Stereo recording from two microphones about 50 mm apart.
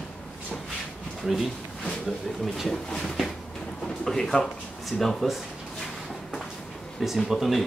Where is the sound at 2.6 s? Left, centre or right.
Centre.